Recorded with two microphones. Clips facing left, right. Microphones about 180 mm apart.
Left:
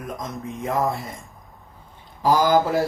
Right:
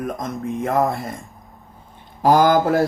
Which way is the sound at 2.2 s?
55° right (ahead or behind).